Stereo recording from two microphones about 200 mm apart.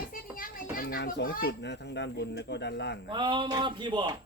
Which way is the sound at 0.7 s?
45° left (ahead or behind).